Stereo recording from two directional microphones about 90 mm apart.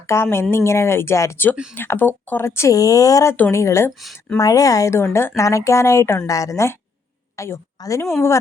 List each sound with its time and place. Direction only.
0.1 s a woman's voice: 30° left (ahead or behind)
1.7 s a woman's voice: 20° left (ahead or behind)